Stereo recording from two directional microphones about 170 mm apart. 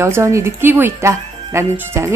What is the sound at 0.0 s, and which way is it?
Speech, 15° right (ahead or behind).